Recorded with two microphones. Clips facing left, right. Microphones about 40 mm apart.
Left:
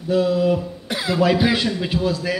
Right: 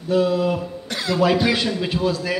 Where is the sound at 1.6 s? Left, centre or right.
Centre.